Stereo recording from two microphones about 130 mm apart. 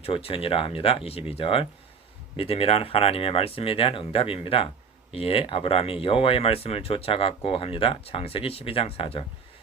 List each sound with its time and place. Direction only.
0.0 s speech: 45° left (ahead or behind)